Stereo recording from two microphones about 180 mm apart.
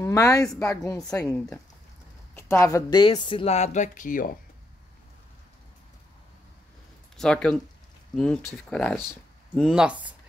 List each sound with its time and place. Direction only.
0.0 s a woman's voice: 15° left (ahead or behind)
1.2 s speech: 5° left (ahead or behind); by 4.3 s 45° left (ahead or behind)
7.2 s speech: 5° left (ahead or behind)